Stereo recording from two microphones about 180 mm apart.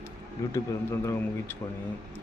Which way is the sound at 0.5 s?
15° left (ahead or behind).